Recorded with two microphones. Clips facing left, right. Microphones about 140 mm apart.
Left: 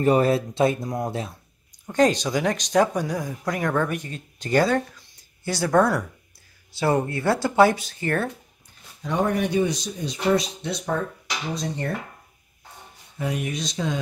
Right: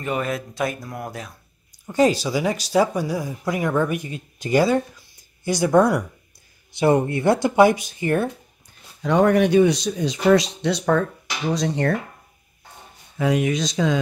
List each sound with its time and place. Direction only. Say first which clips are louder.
0.0 s speech: left 7 dB; 35° left (ahead or behind)
1.7 s speech: right 1 dB; 5° right (ahead or behind)
9.0 s speech: right 7 dB; 80° right
11.5 s speech: right 8 dB; 90° right
13.2 s speech: right 7 dB; 90° right